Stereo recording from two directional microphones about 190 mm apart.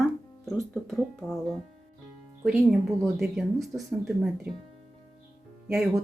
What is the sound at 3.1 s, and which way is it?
Speech, centre (ahead or behind).